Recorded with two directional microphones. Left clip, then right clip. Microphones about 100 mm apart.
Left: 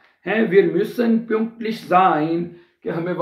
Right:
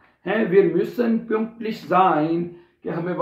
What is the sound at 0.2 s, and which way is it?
Speech, 30° right (ahead or behind).